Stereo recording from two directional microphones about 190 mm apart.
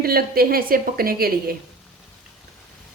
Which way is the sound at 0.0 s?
50° right (ahead or behind).